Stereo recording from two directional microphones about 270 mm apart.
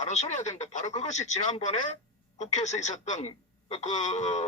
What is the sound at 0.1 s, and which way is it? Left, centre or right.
Speech, left.